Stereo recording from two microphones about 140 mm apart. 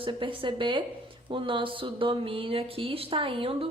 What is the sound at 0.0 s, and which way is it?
A woman's voice, 35° right (ahead or behind).